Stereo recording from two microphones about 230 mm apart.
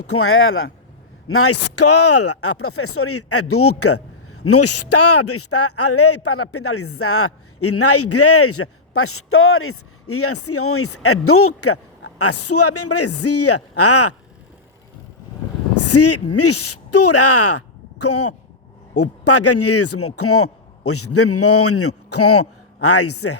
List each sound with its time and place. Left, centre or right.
0.0 s speech: left
1.3 s speech: left
15.7 s speech: left